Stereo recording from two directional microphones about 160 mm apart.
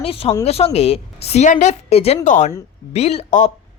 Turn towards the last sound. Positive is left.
turn(degrees=45)  # may be behind; listen again after turning